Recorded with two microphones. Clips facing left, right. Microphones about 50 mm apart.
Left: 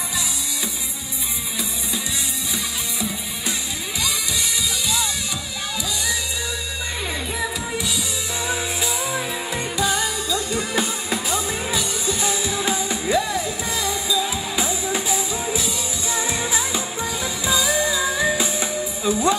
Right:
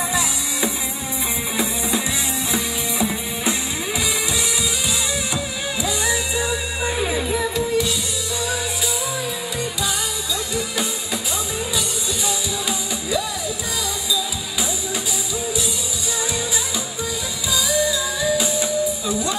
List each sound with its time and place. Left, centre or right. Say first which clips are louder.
2.5 s music: right 5 dB; right
7.0 s music: right 4 dB; centre
9.8 s music: left 3 dB; left
16.3 s music: left 1 dB; left